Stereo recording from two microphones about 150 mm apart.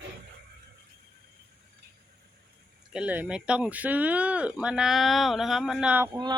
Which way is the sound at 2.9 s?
10° right (ahead or behind).